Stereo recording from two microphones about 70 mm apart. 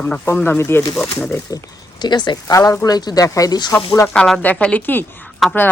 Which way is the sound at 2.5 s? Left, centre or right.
Left.